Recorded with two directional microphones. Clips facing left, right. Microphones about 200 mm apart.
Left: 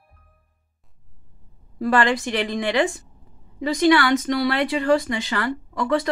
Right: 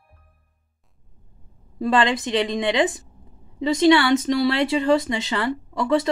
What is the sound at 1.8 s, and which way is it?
Speech, 20° right (ahead or behind).